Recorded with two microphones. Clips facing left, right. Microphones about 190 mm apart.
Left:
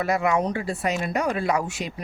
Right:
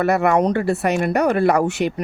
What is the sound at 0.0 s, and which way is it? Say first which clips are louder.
Speech: right 6 dB; 65° right (ahead or behind).